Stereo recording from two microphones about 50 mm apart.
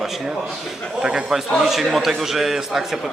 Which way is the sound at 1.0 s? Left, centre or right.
Centre.